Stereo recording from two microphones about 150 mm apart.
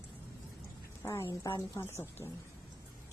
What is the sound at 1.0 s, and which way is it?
A woman's voice, 20° left (ahead or behind).